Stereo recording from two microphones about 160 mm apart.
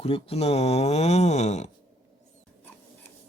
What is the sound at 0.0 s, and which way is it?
Speech, 35° left (ahead or behind).